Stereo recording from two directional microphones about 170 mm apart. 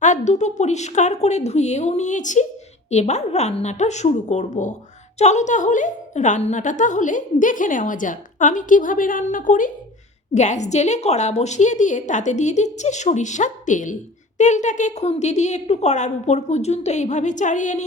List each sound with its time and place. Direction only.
0.0 s a woman's voice: 45° left (ahead or behind)